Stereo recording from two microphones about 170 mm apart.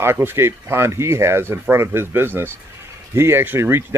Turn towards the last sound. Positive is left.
turn(degrees=-15)  # may be behind; listen again after turning